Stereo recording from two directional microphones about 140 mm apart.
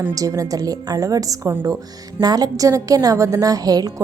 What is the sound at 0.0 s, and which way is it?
A woman's voice, 25° right (ahead or behind).